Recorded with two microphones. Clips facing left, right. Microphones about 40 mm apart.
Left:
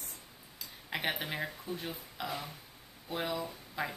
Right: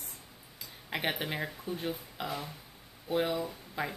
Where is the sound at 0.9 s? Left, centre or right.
Centre.